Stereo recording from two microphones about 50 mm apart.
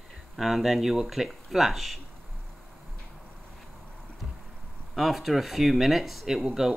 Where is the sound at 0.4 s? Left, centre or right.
Centre.